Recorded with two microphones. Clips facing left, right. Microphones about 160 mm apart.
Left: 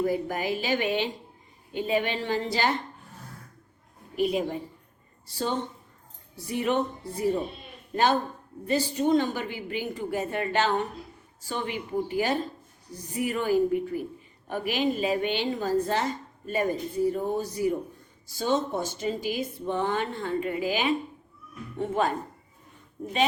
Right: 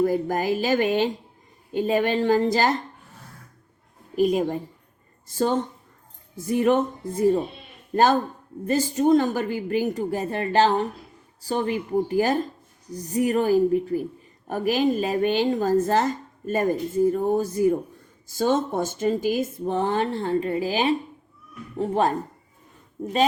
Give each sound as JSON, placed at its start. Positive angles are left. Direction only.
{"t": 0.0, "sound": "a woman's voice", "side_deg": -45}
{"t": 4.1, "sound": "a woman's voice", "side_deg": -45}
{"t": 8.6, "sound": "a woman's voice", "side_deg": -45}